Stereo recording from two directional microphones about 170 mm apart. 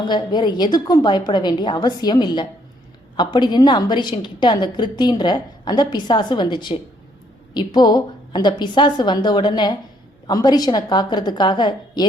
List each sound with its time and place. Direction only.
0.1 s a woman's voice: 25° left (ahead or behind)